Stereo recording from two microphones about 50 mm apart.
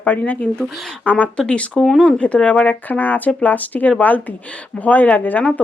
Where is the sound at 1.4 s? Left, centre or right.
Centre.